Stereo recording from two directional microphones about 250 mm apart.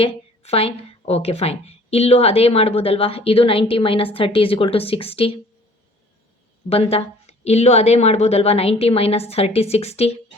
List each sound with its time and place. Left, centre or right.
0.0 s a woman's voice: left
6.7 s a woman's voice: left